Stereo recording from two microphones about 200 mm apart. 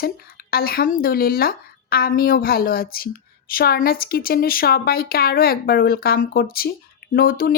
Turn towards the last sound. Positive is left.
turn(degrees=45)  # may be behind; listen again after turning